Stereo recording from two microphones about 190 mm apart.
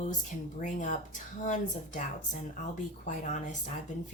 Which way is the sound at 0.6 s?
40° left (ahead or behind).